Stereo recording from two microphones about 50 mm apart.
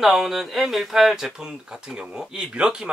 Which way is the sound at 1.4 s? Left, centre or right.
Centre.